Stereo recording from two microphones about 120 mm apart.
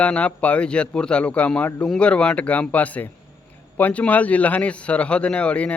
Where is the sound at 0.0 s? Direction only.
10° left (ahead or behind).